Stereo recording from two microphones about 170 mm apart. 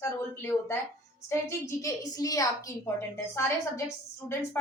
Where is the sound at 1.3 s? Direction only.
15° left (ahead or behind).